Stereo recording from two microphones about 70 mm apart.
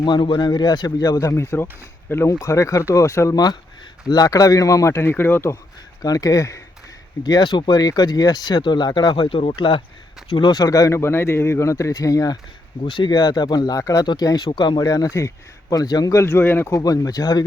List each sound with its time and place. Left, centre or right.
0.1 s speech: left
1.4 s speech: left
2.4 s a man's voice: left
3.3 s a man's voice: left
6.0 s speech: left
7.3 s speech: left
10.2 s speech: left
10.9 s a man's voice: left
13.1 s speech: left
13.7 s speech: left
15.7 s speech: left
16.1 s a man's voice: left
16.4 s speech: left
16.6 s speech: left